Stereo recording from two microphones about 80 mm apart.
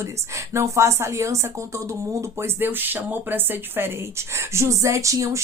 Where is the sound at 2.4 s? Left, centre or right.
Right.